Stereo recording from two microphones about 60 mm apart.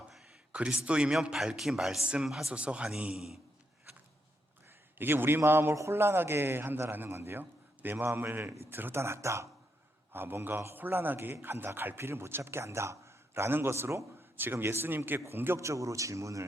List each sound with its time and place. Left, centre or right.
0.5 s a man's voice: centre
2.5 s a man's voice: centre
4.9 s a man's voice: right
10.1 s a man's voice: right
15.5 s a man's voice: right